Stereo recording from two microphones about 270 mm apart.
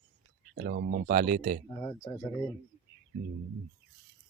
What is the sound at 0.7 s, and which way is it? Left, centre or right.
Speech, right.